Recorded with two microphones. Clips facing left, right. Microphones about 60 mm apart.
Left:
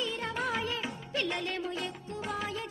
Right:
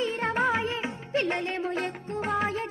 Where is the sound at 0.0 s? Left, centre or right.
Right.